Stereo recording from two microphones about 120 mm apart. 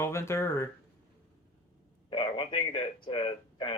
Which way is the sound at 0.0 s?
20° left (ahead or behind).